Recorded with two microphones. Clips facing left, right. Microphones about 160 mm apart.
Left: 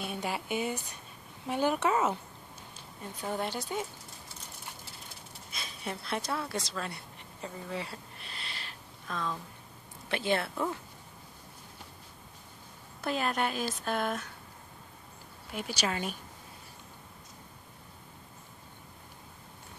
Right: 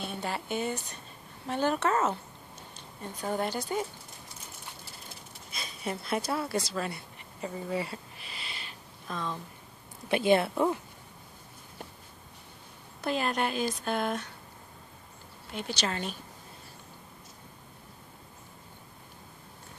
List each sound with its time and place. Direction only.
0.0 s speech: 10° left (ahead or behind)
2.7 s speech: centre (ahead or behind)
5.5 s speech: centre (ahead or behind)
10.0 s speech: 15° right (ahead or behind)
13.0 s speech: centre (ahead or behind)
15.5 s speech: 5° left (ahead or behind)